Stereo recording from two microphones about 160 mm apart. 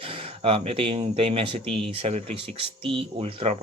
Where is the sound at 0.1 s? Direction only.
35° right (ahead or behind).